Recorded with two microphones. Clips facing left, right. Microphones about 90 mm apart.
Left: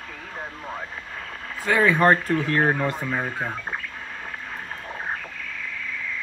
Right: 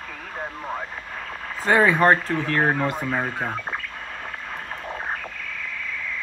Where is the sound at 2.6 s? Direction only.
5° right (ahead or behind).